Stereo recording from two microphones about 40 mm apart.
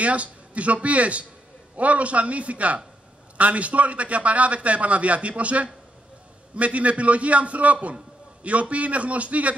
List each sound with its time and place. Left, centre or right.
0.0 s a man's voice: right